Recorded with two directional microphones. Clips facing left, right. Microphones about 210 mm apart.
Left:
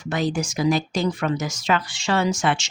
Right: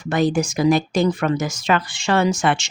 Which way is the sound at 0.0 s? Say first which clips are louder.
Right 5 dB; 55° right (ahead or behind).